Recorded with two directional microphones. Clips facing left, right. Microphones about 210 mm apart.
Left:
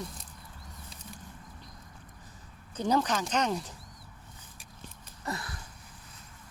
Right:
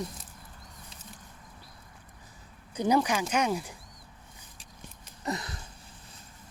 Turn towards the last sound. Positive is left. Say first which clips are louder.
# right 3 dB
turn(degrees=-20)  # may be behind; listen again after turning